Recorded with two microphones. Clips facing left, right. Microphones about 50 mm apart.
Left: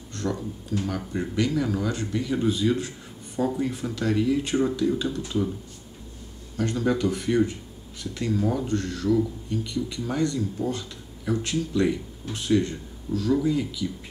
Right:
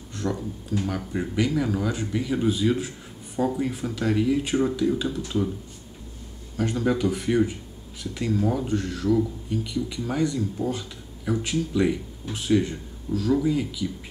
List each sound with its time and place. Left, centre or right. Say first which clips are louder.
0.1 s speech: right 1 dB; centre
6.5 s speech: even; centre